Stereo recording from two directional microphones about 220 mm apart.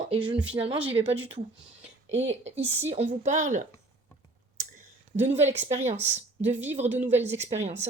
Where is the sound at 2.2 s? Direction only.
30° right (ahead or behind).